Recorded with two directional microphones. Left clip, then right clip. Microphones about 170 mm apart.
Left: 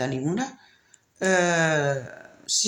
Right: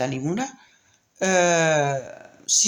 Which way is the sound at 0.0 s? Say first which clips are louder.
Right 2 dB; 35° right (ahead or behind).